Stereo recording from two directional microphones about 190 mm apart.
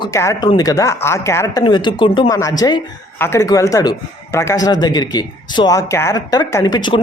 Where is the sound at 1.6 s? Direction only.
25° left (ahead or behind).